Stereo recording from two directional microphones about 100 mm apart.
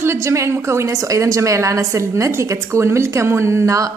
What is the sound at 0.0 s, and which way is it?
A woman's voice, 30° right (ahead or behind).